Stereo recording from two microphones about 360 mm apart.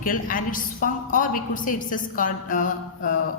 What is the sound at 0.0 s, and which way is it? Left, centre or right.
A woman's voice, left.